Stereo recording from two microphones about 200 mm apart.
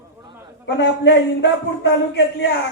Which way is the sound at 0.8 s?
60° left (ahead or behind).